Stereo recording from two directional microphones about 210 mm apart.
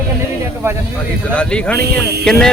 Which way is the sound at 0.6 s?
15° right (ahead or behind).